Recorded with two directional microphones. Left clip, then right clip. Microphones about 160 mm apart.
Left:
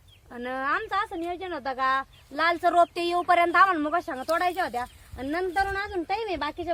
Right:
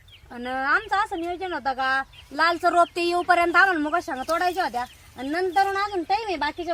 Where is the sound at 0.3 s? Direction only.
20° left (ahead or behind).